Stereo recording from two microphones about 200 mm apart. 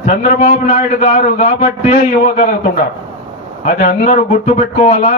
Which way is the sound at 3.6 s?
40° left (ahead or behind).